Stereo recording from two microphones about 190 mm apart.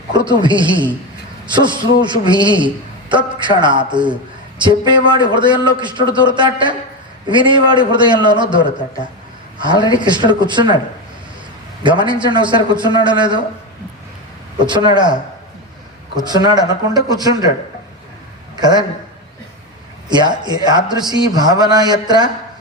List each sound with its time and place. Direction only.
0.1 s a man's voice: 25° right (ahead or behind)
11.8 s a man's voice: 25° right (ahead or behind)
14.7 s a man's voice: 25° right (ahead or behind)
18.5 s a man's voice: 20° right (ahead or behind)
20.1 s a man's voice: 25° right (ahead or behind)